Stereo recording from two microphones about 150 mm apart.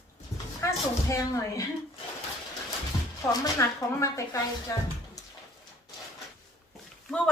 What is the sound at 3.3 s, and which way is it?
Speech, 20° left (ahead or behind).